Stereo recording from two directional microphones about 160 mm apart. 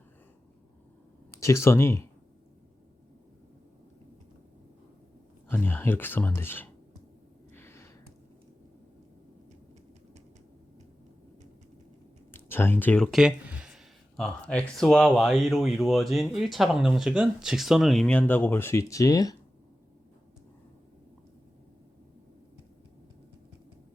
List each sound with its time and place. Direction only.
1.3 s speech: 20° left (ahead or behind)
5.5 s speech: 15° left (ahead or behind)
7.5 s a sound: 15° left (ahead or behind)
12.3 s speech: 15° left (ahead or behind)